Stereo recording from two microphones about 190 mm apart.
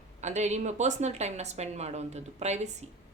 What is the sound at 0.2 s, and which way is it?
A woman's voice, 40° right (ahead or behind).